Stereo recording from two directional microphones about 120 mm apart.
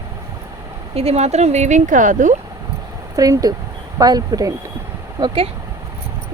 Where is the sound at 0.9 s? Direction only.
60° right (ahead or behind); by 2.3 s 90° right.